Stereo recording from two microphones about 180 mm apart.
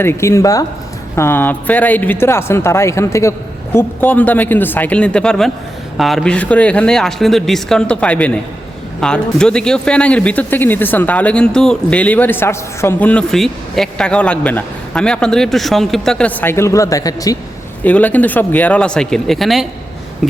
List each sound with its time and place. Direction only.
0.0 s a man's voice: 15° left (ahead or behind)
17.8 s speech: 10° left (ahead or behind)